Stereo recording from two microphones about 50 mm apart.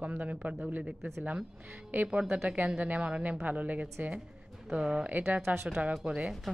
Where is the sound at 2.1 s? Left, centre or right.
Right.